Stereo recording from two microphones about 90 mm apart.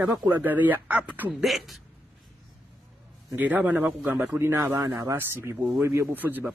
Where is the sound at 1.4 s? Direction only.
Centre (ahead or behind).